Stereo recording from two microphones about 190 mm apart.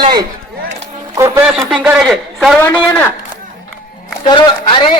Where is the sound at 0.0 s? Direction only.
20° right (ahead or behind).